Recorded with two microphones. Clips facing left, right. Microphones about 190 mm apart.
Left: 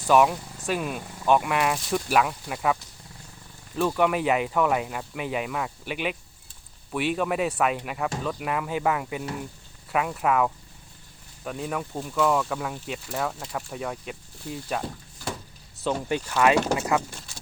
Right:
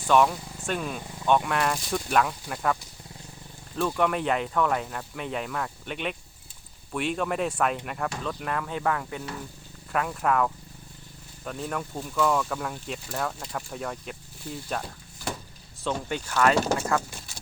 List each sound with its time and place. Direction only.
0.1 s speech: 5° left (ahead or behind)
3.8 s speech: 5° left (ahead or behind)
16.3 s speech: 15° left (ahead or behind)